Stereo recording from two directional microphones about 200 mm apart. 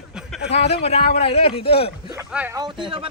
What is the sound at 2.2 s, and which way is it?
Speech, 10° right (ahead or behind).